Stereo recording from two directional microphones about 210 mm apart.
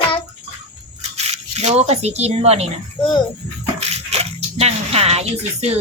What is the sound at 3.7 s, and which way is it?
Bathtub, 30° right (ahead or behind).